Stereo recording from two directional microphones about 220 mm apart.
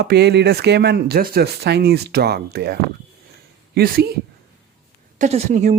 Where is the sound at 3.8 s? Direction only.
45° right (ahead or behind).